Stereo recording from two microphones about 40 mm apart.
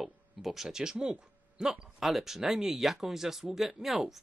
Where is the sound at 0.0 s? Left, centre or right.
Centre.